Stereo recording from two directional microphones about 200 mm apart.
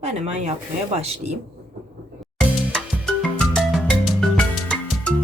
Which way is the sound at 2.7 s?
5° left (ahead or behind).